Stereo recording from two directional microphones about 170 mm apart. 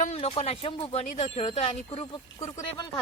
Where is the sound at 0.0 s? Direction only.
40° left (ahead or behind).